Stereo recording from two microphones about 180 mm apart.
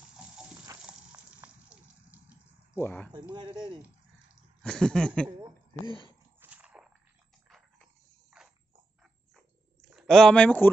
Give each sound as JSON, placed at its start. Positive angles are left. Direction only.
{"t": 0.9, "sound": "water", "side_deg": -5}
{"t": 2.7, "sound": "speech", "side_deg": 10}
{"t": 3.3, "sound": "speech", "side_deg": -25}
{"t": 4.6, "sound": "a sound", "side_deg": 5}
{"t": 5.8, "sound": "speech", "side_deg": 25}
{"t": 6.4, "sound": "a sound", "side_deg": -5}
{"t": 9.8, "sound": "speech", "side_deg": 0}